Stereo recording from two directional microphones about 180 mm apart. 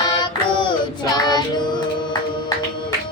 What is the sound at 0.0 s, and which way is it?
Child singing, 25° left (ahead or behind).